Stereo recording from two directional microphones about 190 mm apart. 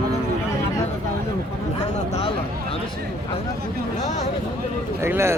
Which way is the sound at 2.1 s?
30° left (ahead or behind).